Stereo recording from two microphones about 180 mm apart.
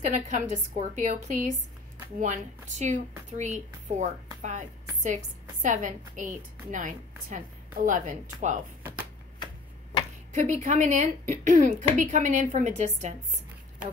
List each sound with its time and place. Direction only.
0.0 s a woman's voice: 40° right (ahead or behind)
10.3 s a woman's voice: 40° right (ahead or behind)